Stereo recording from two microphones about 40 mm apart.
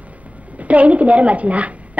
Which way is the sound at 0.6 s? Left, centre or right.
Right.